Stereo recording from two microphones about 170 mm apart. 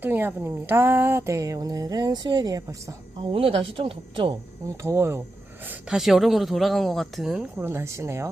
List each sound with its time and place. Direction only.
0.0 s speech: 10° right (ahead or behind); by 4.4 s 30° right (ahead or behind)
4.8 s speech: 15° right (ahead or behind)
5.6 s speech: 5° right (ahead or behind)
7.6 s speech: 15° right (ahead or behind)